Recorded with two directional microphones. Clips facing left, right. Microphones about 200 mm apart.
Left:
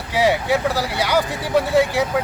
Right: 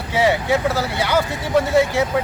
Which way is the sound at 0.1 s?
10° left (ahead or behind).